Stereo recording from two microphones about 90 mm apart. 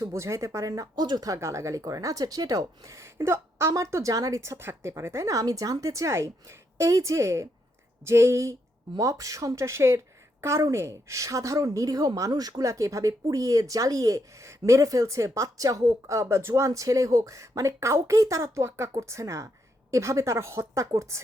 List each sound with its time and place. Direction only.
0.0 s speech: 30° right (ahead or behind)